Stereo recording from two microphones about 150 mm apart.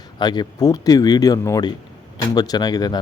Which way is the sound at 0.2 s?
30° left (ahead or behind).